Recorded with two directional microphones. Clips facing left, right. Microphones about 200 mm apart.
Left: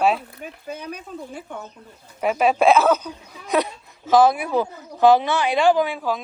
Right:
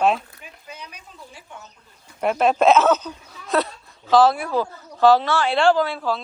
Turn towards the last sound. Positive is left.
turn(degrees=15)  # may be behind; listen again after turning